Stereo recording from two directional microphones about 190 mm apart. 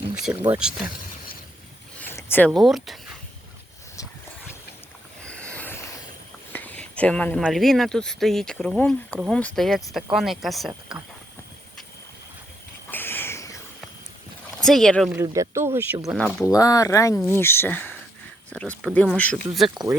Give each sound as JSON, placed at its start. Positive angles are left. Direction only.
{"t": 0.5, "sound": "speech", "side_deg": -5}
{"t": 2.0, "sound": "speech", "side_deg": 10}
{"t": 5.2, "sound": "a sound", "side_deg": 5}
{"t": 7.4, "sound": "speech", "side_deg": 0}
{"t": 10.7, "sound": "speech", "side_deg": -20}
{"t": 12.9, "sound": "a sound", "side_deg": 10}
{"t": 14.6, "sound": "speech", "side_deg": 0}
{"t": 15.1, "sound": "speech", "side_deg": -15}
{"t": 16.1, "sound": "speech", "side_deg": 0}
{"t": 16.5, "sound": "speech", "side_deg": 20}